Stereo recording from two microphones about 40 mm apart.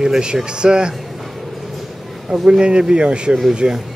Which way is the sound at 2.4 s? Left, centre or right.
Right.